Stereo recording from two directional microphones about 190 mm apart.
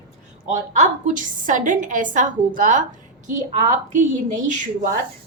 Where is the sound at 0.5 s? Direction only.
40° right (ahead or behind).